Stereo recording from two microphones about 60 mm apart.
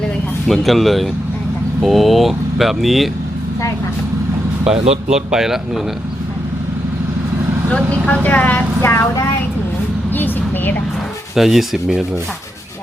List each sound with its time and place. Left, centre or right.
0.4 s speech: centre
4.6 s speech: centre
8.0 s a woman's voice: left
8.8 s speech: left
10.1 s vehicle: left
11.3 s speech: centre